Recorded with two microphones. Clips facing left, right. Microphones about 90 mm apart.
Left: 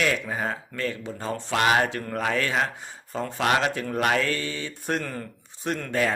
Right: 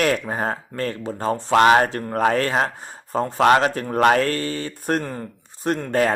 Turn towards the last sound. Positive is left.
turn(degrees=-45)  # may be behind; listen again after turning